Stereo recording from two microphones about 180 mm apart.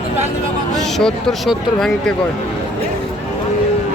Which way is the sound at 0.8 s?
Centre (ahead or behind).